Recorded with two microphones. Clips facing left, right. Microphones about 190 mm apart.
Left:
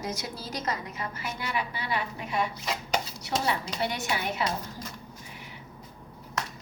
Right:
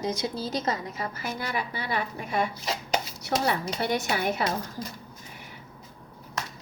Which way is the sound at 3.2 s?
45° right (ahead or behind).